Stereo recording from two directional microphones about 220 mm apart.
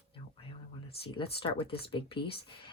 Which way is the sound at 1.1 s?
25° left (ahead or behind).